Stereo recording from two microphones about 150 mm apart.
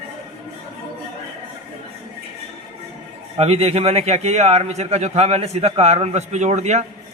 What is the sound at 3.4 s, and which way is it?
A man's voice, 40° right (ahead or behind).